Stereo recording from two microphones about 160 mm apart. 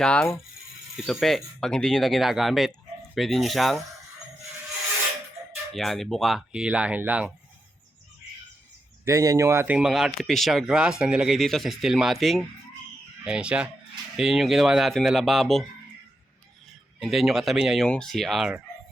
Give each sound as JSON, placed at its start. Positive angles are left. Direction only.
{"t": 0.0, "sound": "mechanisms", "side_deg": 5}
{"t": 1.0, "sound": "speech", "side_deg": 0}
{"t": 5.7, "sound": "speech", "side_deg": 0}
{"t": 9.0, "sound": "speech", "side_deg": -20}
{"t": 9.7, "sound": "speech", "side_deg": 0}
{"t": 17.0, "sound": "speech", "side_deg": 0}